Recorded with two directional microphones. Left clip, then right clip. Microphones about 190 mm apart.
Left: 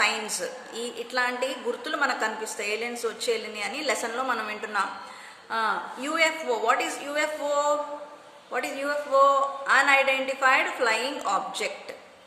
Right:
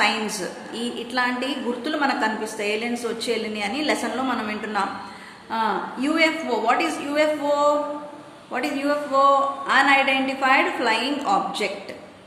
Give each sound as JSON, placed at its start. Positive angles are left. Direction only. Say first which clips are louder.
{"t": 0.8, "sound": "a woman's voice", "louder": "right 3 dB", "side_deg": 30}